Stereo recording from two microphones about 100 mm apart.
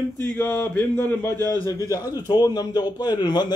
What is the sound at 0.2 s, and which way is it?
Speech, 25° left (ahead or behind).